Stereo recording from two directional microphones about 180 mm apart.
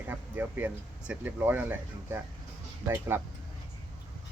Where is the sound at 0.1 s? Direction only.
10° right (ahead or behind).